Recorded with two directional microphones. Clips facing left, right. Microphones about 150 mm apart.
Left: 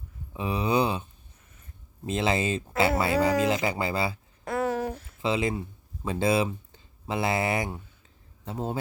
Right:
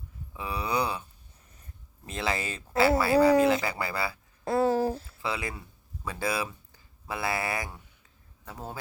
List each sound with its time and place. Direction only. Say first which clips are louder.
0.3 s speech: left 5 dB; 20° left (ahead or behind)
2.0 s speech: left 6 dB; 20° left (ahead or behind)
4.4 s a sound: right 3 dB; 30° right (ahead or behind)
5.2 s speech: left 8 dB; 20° left (ahead or behind)